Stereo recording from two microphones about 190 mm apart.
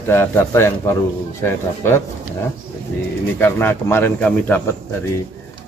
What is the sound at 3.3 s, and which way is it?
A man's voice, 10° left (ahead or behind).